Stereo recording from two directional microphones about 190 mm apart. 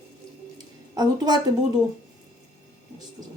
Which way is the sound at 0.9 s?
20° right (ahead or behind).